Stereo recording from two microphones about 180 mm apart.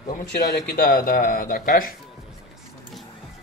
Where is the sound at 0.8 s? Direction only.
50° left (ahead or behind).